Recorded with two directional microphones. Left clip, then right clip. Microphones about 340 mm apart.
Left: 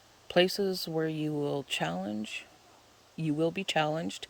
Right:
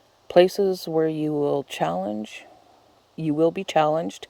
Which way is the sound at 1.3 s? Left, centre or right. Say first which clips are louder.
Right 9 dB; right.